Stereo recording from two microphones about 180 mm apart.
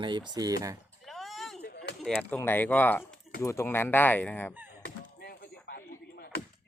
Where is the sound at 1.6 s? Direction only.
60° left (ahead or behind).